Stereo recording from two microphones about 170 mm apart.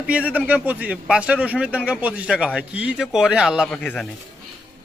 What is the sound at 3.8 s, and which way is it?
Speech, 5° left (ahead or behind).